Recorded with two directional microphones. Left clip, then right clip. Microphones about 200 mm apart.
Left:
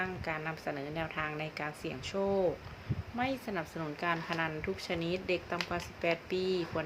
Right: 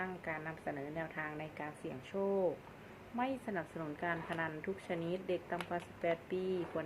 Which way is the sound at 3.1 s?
15° left (ahead or behind).